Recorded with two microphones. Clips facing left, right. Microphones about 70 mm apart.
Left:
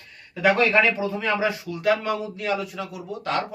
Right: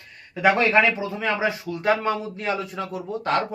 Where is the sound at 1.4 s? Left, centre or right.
Right.